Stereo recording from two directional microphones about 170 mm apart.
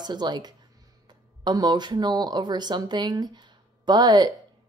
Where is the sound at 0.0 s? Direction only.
25° right (ahead or behind).